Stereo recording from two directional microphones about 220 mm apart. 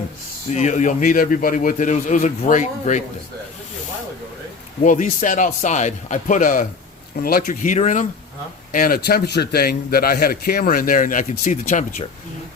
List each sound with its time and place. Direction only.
0.5 s a man's voice: 35° left (ahead or behind)
4.8 s a man's voice: 35° left (ahead or behind)